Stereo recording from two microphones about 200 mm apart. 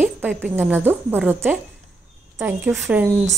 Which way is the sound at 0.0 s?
10° right (ahead or behind).